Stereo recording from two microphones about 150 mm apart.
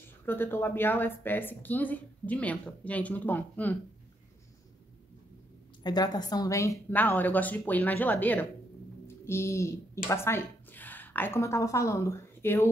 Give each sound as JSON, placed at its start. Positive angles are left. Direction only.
{"t": 0.2, "sound": "speech", "side_deg": 15}
{"t": 5.9, "sound": "a child's voice", "side_deg": 25}